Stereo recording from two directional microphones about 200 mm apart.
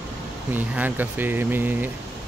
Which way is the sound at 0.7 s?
10° right (ahead or behind).